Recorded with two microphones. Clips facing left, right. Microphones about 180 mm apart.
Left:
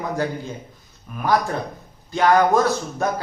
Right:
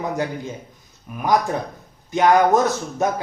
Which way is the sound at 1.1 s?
15° right (ahead or behind).